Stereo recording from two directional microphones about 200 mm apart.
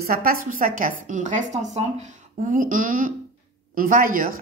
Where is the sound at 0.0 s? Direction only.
50° right (ahead or behind).